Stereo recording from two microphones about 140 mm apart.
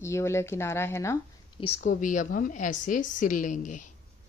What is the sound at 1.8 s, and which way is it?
A woman's voice, 70° left (ahead or behind).